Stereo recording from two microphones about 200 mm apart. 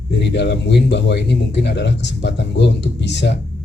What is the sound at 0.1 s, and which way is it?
Speech, 60° left (ahead or behind).